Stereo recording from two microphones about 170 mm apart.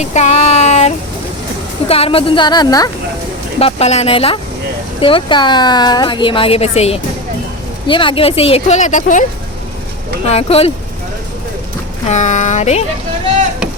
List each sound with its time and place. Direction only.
0.0 s child singing: 40° left (ahead or behind)
1.9 s a woman's voice: 35° left (ahead or behind)
3.6 s a woman's voice: 35° left (ahead or behind)
10.2 s a woman's voice: 35° left (ahead or behind)
12.0 s speech: 45° left (ahead or behind)